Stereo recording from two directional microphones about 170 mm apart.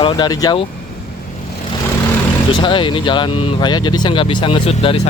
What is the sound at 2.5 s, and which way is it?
Speech, 30° left (ahead or behind).